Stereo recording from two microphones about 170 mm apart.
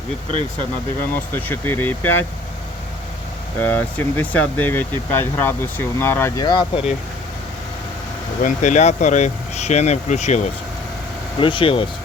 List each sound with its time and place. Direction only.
1.1 s speech: 10° left (ahead or behind)
3.6 s speech: 10° left (ahead or behind); by 6.8 s 25° left (ahead or behind)
8.4 s speech: 50° left (ahead or behind)
11.3 s speech: 30° left (ahead or behind)